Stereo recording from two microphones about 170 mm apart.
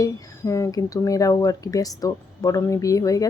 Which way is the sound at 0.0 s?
20° left (ahead or behind).